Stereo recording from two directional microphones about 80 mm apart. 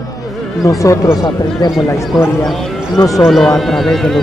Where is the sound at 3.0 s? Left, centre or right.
Left.